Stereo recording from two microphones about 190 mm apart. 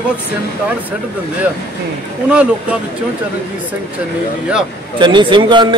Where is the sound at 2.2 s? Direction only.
5° right (ahead or behind).